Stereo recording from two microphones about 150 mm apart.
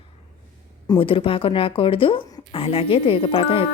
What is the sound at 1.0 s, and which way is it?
A woman's voice, 35° left (ahead or behind).